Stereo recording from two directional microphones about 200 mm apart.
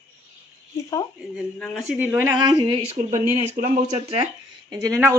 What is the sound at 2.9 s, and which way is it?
Speech, 35° right (ahead or behind).